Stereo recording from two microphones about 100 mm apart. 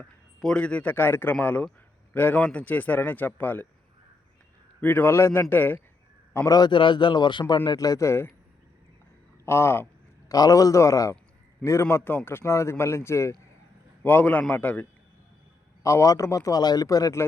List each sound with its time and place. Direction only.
0.0 s a man's voice: 10° left (ahead or behind)
4.8 s a man's voice: 20° left (ahead or behind)
6.3 s a man's voice: 35° left (ahead or behind)
7.8 s a man's voice: 35° left (ahead or behind)
9.5 s a man's voice: 25° left (ahead or behind)
10.2 s a man's voice: 35° left (ahead or behind); by 14.8 s 15° left (ahead or behind)
15.8 s a man's voice: 30° left (ahead or behind)